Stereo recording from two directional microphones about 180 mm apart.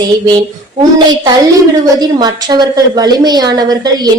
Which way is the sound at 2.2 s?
20° right (ahead or behind).